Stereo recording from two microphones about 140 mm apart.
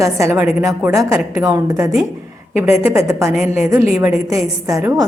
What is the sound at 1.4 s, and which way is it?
A woman's voice, 25° right (ahead or behind).